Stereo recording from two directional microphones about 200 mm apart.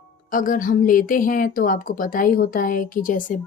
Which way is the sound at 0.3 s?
45° left (ahead or behind).